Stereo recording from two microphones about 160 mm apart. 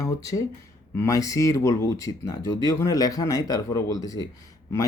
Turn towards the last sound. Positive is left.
turn(degrees=20)  # may be behind; listen again after turning